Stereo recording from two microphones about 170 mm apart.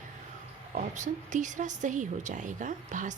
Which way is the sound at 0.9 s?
45° right (ahead or behind).